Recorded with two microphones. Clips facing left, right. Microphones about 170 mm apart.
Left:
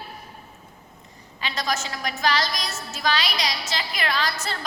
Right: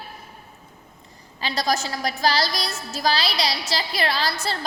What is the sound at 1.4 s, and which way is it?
A woman's voice, 35° right (ahead or behind).